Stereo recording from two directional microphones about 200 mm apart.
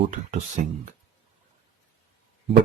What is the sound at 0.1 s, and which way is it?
Speech, 35° right (ahead or behind).